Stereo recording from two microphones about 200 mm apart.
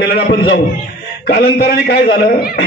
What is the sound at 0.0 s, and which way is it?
A man's voice, 55° left (ahead or behind).